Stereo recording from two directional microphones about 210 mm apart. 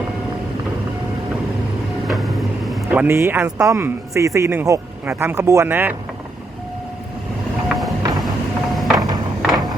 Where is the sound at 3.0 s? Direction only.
10° right (ahead or behind).